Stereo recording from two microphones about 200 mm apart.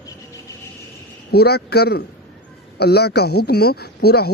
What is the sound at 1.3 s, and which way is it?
Speech, 55° left (ahead or behind).